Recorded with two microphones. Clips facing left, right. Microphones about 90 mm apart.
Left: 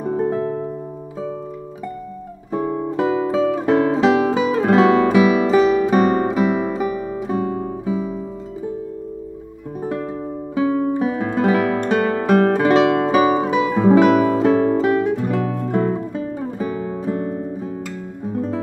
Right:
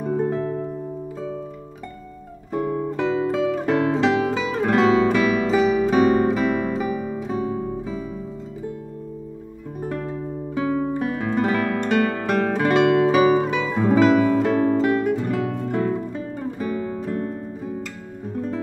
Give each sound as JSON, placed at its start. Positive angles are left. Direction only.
{"t": 0.0, "sound": "music", "side_deg": 5}
{"t": 0.4, "sound": "music", "side_deg": 20}
{"t": 2.5, "sound": "music", "side_deg": 5}
{"t": 7.3, "sound": "music", "side_deg": 55}
{"t": 7.8, "sound": "music", "side_deg": 15}
{"t": 9.8, "sound": "music", "side_deg": 5}
{"t": 16.7, "sound": "music", "side_deg": 15}